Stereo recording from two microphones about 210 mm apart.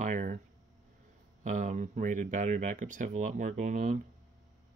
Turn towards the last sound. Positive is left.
turn(degrees=-40)  # may be behind; listen again after turning